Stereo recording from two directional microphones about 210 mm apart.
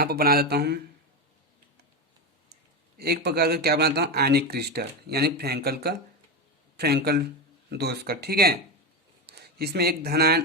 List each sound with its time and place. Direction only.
0.0 s speech: 45° right (ahead or behind)
3.0 s a man's voice: 50° right (ahead or behind)